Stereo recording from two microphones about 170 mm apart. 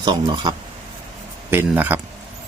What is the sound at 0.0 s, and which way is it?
Speech, 25° right (ahead or behind).